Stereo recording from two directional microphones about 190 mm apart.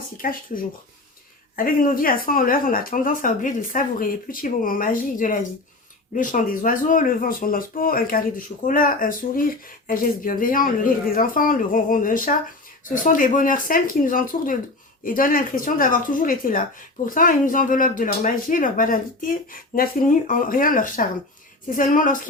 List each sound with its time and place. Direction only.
0.2 s speech: 50° left (ahead or behind)